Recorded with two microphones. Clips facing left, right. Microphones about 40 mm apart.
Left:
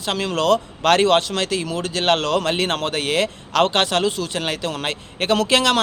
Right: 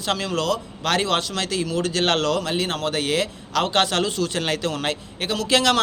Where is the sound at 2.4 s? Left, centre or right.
Left.